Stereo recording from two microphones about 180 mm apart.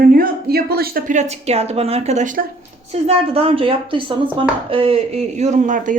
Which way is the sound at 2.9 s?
35° right (ahead or behind).